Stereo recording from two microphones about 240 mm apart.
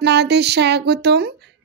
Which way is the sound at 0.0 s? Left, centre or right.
Right.